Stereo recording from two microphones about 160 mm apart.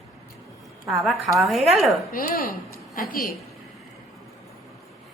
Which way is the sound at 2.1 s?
65° left (ahead or behind).